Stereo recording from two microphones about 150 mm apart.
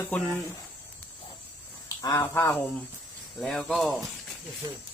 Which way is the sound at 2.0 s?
20° left (ahead or behind).